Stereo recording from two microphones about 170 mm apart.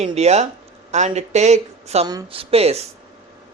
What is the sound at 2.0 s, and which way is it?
Speech, 30° right (ahead or behind).